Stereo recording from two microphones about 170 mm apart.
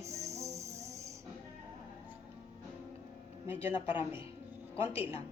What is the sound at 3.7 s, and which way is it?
Speech, 30° left (ahead or behind).